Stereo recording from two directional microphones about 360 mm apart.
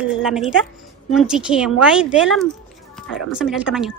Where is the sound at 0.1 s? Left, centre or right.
Centre.